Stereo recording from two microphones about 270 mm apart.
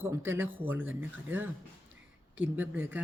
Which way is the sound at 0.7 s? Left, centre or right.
Right.